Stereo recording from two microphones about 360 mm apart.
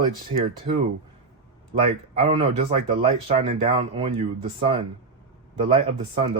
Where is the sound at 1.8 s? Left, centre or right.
Centre.